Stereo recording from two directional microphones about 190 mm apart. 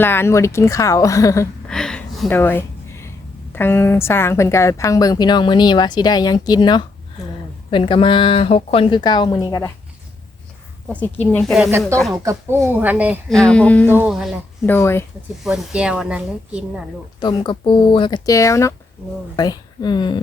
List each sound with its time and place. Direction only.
0.0 s a woman's voice: 10° left (ahead or behind)
1.6 s speech: 5° left (ahead or behind)
2.4 s a sound: 10° left (ahead or behind)
3.5 s a woman's voice: 10° left (ahead or behind)
10.8 s a woman's voice: 10° left (ahead or behind)
12.1 s speech: 15° right (ahead or behind)
13.3 s a woman's voice: 5° left (ahead or behind)
13.8 s speech: 10° right (ahead or behind)
14.7 s a woman's voice: 15° left (ahead or behind)
15.4 s a woman's voice: 5° right (ahead or behind)
17.2 s a woman's voice: 25° left (ahead or behind)